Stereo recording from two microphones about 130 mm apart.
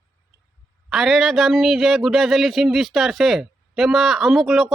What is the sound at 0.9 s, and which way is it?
A man's voice, centre (ahead or behind).